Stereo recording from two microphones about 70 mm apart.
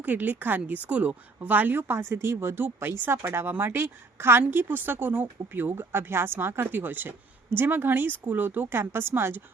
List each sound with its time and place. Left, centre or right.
0.0 s a woman's voice: right